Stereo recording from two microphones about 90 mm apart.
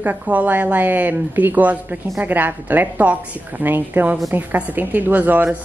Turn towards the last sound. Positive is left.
turn(degrees=-20)  # may be behind; listen again after turning